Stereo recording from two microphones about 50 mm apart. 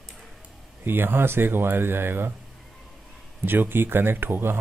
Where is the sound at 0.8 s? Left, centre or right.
Right.